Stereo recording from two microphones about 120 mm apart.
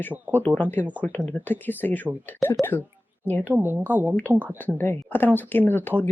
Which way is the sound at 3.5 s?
15° right (ahead or behind).